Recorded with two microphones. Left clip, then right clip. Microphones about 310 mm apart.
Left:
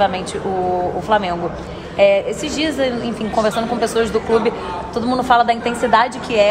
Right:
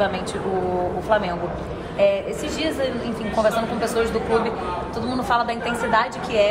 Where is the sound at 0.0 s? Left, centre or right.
Left.